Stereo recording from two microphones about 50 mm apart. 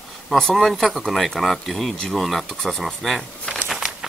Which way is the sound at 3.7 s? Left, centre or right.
Centre.